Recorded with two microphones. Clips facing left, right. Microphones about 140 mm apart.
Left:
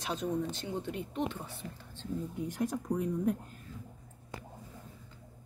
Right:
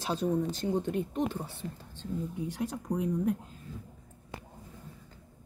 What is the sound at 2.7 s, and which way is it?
Speech, 10° right (ahead or behind).